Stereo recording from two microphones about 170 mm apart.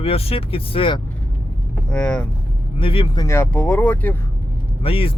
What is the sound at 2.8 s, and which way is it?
Speech, 30° left (ahead or behind).